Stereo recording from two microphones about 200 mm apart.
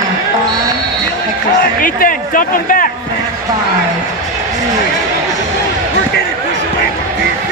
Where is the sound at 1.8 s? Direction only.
45° left (ahead or behind).